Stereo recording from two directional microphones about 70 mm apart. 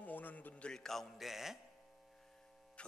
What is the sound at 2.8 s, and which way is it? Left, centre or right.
Hum, centre.